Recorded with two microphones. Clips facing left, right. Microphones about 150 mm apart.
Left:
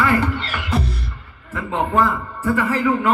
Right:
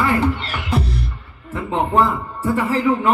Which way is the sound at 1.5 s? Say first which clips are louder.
Right 2 dB; 25° right (ahead or behind).